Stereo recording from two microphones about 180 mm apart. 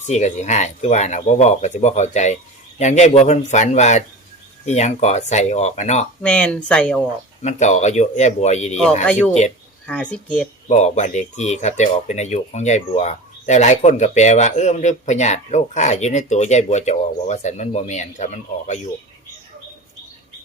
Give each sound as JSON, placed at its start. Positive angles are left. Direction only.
{"t": 0.1, "sound": "speech", "side_deg": 40}
{"t": 6.2, "sound": "speech", "side_deg": 5}
{"t": 7.4, "sound": "speech", "side_deg": 40}
{"t": 9.0, "sound": "speech", "side_deg": 5}
{"t": 10.7, "sound": "speech", "side_deg": 40}